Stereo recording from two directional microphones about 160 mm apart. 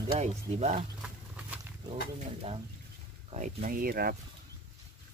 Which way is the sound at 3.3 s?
55° right (ahead or behind).